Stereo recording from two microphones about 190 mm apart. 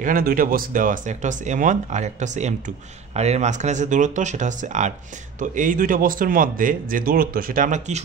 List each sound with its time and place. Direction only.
0.0 s speech: 45° right (ahead or behind)